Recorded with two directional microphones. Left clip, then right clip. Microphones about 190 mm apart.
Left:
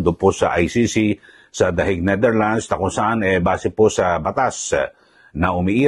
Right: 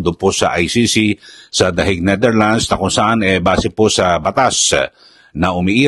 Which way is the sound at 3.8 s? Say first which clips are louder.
Right 1 dB; 70° right (ahead or behind).